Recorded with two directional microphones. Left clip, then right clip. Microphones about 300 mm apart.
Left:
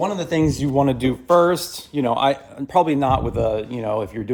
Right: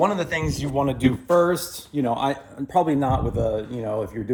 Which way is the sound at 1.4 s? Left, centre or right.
Centre.